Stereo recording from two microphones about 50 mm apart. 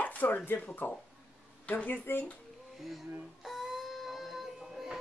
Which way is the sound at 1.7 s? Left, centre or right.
Left.